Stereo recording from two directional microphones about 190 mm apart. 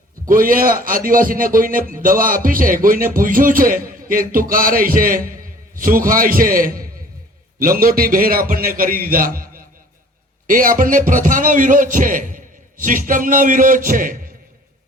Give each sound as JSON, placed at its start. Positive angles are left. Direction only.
{"t": 0.3, "sound": "a man's voice", "side_deg": -45}